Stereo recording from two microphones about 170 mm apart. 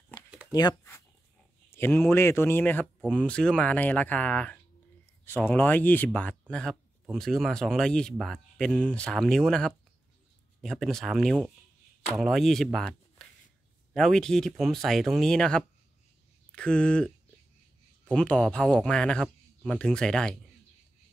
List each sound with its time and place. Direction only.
0.5 s speech: 25° left (ahead or behind); by 17.1 s 5° left (ahead or behind)
18.1 s speech: 5° left (ahead or behind)